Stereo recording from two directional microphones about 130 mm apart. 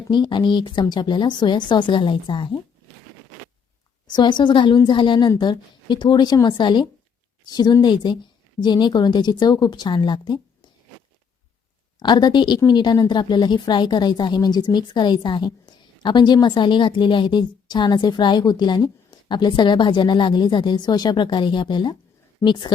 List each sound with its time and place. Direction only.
0.1 s a woman's voice: 35° left (ahead or behind)
4.0 s a woman's voice: 35° left (ahead or behind)
11.9 s a woman's voice: 35° left (ahead or behind)